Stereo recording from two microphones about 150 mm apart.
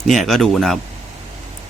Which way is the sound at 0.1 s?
Centre (ahead or behind).